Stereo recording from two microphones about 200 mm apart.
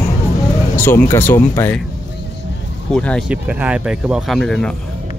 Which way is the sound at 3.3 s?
5° right (ahead or behind).